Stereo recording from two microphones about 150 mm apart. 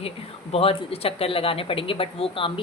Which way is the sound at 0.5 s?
40° left (ahead or behind).